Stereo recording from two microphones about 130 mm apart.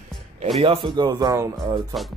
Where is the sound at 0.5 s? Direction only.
40° right (ahead or behind).